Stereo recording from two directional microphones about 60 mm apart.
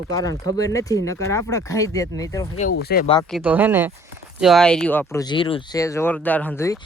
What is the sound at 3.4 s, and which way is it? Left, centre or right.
Speech, right.